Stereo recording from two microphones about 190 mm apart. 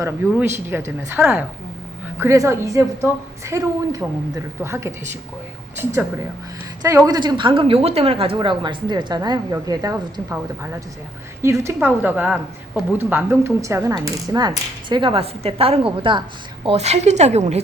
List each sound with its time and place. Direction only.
0.0 s a woman's voice: 10° right (ahead or behind)
7.1 s a woman's voice: 20° right (ahead or behind)